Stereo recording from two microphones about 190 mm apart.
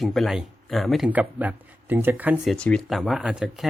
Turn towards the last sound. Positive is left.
turn(degrees=-5)  # may be behind; listen again after turning